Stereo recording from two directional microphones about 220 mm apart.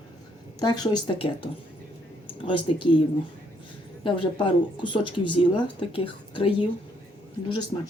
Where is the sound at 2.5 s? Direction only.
20° left (ahead or behind).